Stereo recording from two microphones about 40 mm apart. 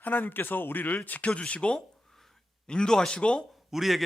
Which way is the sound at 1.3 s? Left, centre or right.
Left.